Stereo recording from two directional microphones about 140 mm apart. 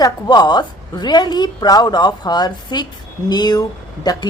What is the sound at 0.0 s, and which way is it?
A woman's voice, 30° left (ahead or behind).